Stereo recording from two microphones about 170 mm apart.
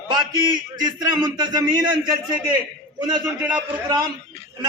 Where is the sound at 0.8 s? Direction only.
25° right (ahead or behind).